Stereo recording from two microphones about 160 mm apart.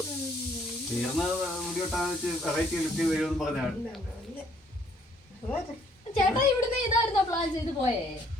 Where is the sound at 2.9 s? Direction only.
Centre (ahead or behind).